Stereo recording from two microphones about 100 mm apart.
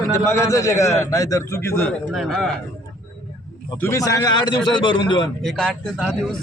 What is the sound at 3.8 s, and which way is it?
Speech, 30° left (ahead or behind).